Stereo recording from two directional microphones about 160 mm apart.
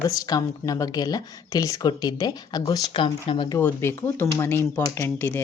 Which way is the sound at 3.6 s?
15° left (ahead or behind).